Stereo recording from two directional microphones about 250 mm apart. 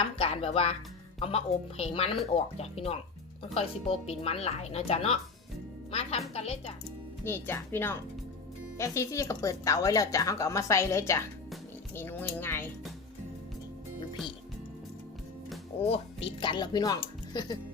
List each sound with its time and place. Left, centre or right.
0.0 s a woman's voice: left
7.3 s speech: centre
15.9 s speech: left